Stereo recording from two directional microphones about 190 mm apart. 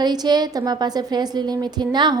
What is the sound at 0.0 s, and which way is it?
A woman's voice, 20° right (ahead or behind).